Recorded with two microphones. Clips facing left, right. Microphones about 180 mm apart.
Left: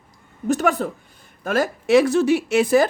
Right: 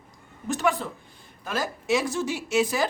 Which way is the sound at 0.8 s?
45° left (ahead or behind).